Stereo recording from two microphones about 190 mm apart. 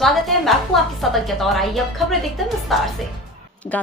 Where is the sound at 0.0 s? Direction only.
Centre (ahead or behind).